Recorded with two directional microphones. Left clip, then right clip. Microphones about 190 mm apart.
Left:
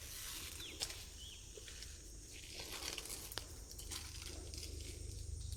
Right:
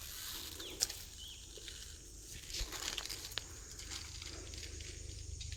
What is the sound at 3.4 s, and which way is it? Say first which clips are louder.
Patter: right 4 dB; 25° left (ahead or behind).